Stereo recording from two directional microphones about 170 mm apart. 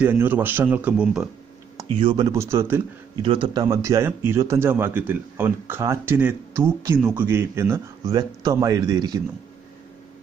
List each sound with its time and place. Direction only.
0.0 s a man's voice: 10° right (ahead or behind)
2.0 s speech: 30° right (ahead or behind)
3.2 s a man's voice: 30° right (ahead or behind)